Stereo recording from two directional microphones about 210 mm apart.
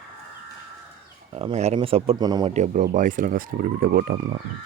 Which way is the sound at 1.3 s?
25° right (ahead or behind).